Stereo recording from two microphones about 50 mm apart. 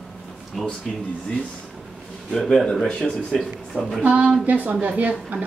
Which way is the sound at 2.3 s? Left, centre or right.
Centre.